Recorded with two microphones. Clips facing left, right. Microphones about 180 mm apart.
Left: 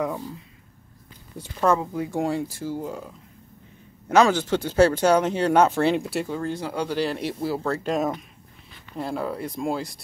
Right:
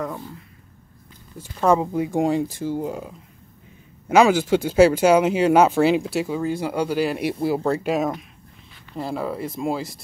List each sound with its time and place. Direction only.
0.0 s speech: 5° left (ahead or behind)
1.8 s speech: 15° right (ahead or behind)
4.1 s speech: 10° right (ahead or behind)